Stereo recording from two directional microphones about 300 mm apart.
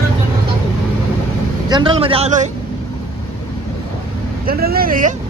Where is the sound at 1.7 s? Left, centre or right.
Centre.